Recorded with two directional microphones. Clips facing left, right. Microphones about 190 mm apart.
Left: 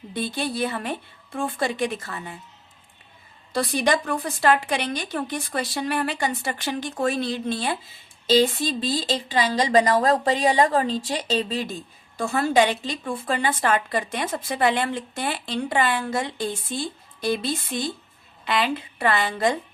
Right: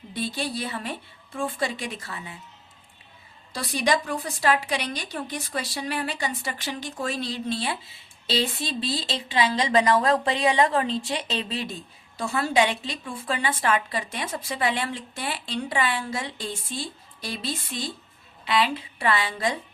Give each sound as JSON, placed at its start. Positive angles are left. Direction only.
{"t": 0.1, "sound": "a woman's voice", "side_deg": 55}
{"t": 3.5, "sound": "a woman's voice", "side_deg": 55}